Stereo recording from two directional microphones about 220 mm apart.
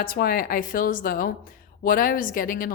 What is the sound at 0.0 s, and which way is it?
Speech, 40° left (ahead or behind).